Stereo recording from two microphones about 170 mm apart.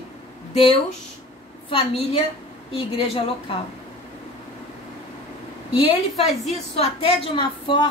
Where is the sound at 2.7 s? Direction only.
30° left (ahead or behind).